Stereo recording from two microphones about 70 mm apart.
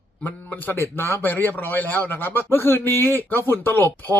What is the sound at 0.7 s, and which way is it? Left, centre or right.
A man's voice, left.